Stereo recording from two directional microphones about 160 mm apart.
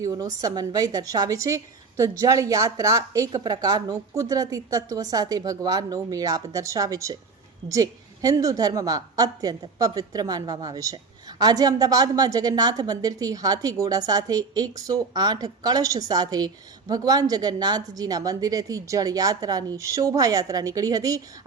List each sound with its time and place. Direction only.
0.0 s a woman's voice: 20° right (ahead or behind)